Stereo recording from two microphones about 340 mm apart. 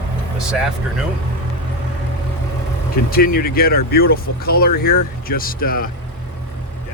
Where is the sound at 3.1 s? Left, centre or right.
Left.